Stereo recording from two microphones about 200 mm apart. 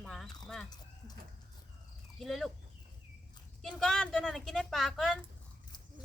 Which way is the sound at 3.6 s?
5° left (ahead or behind).